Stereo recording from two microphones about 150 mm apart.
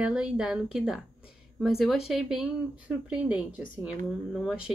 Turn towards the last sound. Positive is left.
turn(degrees=-5)  # may be behind; listen again after turning